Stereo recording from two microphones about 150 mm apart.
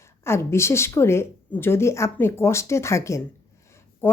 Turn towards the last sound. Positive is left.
turn(degrees=15)  # may be behind; listen again after turning